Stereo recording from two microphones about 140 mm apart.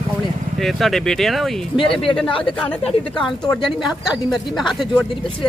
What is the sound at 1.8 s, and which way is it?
Speech, 40° left (ahead or behind).